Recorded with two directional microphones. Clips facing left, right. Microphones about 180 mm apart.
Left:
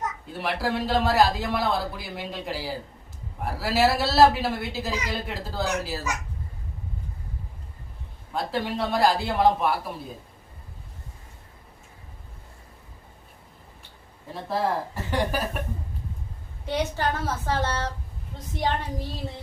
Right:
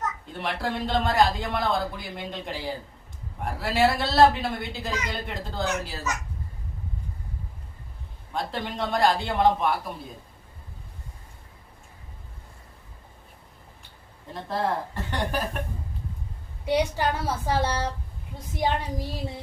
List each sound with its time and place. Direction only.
0.3 s a man's voice: 5° left (ahead or behind)
8.3 s a man's voice: 5° left (ahead or behind)
14.3 s a man's voice: 5° left (ahead or behind)
16.6 s a woman's voice: 10° right (ahead or behind)